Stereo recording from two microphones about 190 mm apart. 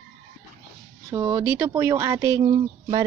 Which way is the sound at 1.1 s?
15° right (ahead or behind).